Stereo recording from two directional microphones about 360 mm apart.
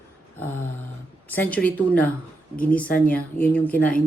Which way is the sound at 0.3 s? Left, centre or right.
Centre.